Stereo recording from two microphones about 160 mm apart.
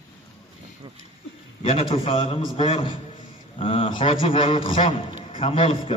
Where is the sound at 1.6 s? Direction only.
40° left (ahead or behind).